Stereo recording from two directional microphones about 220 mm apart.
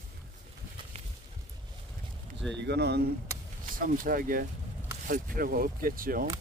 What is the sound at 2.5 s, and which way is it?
Speech, 50° right (ahead or behind).